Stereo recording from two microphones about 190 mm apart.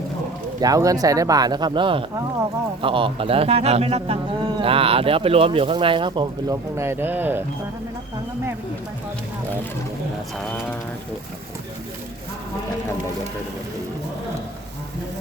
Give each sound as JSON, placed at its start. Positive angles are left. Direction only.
{"t": 0.6, "sound": "speech", "side_deg": -20}